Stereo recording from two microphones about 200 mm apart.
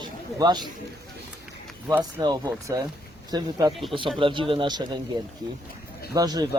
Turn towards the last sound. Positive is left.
turn(degrees=-20)  # may be behind; listen again after turning